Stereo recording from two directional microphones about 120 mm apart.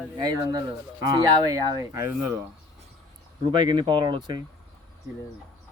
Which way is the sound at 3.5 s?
40° right (ahead or behind).